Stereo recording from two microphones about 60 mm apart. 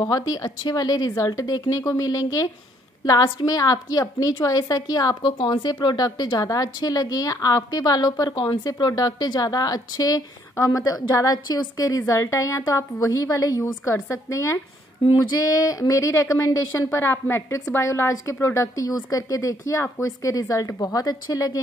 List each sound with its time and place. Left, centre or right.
0.0 s a woman's voice: left
14.0 s a woman's voice: left
15.1 s a woman's voice: left
16.7 s a woman's voice: left
17.7 s a woman's voice: left